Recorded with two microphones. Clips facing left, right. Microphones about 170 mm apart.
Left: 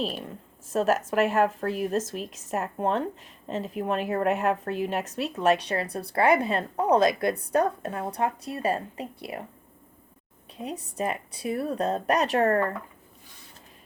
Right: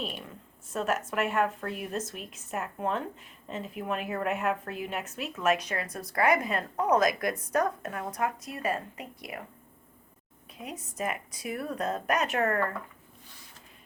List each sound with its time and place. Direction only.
0.0 s speech: 35° left (ahead or behind)
10.6 s speech: 35° left (ahead or behind)